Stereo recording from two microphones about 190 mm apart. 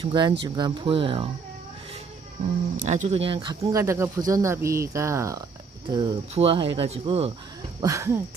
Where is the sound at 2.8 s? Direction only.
40° right (ahead or behind).